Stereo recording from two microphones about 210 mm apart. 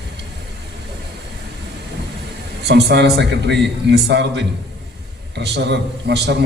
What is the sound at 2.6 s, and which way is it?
A man's voice, 50° right (ahead or behind).